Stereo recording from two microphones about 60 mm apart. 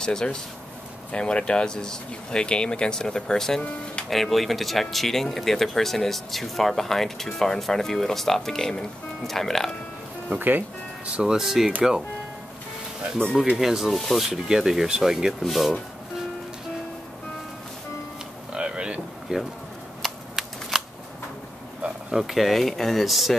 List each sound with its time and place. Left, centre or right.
0.0 s speech: centre
10.3 s speech: right
11.1 s speech: centre
13.4 s speech: centre
18.5 s a sound: centre
19.3 s speech: centre
20.0 s a sound: centre
22.1 s speech: centre